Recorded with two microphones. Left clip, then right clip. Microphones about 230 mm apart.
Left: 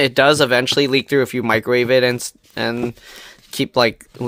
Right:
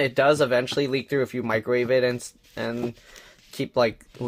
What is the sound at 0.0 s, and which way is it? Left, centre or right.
Speech, left.